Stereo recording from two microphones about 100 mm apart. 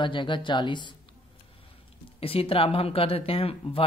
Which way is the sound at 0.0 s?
55° left (ahead or behind).